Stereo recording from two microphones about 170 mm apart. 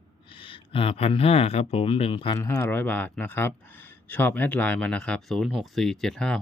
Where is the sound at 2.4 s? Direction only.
15° left (ahead or behind).